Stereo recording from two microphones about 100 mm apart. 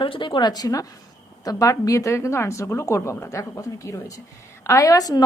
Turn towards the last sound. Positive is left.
turn(degrees=40)  # may be behind; listen again after turning